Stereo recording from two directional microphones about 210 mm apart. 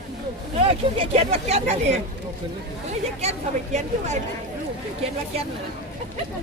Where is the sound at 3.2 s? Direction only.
30° right (ahead or behind).